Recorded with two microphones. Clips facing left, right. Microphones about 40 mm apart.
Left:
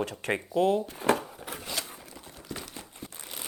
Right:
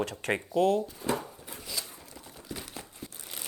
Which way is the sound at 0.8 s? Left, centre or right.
Left.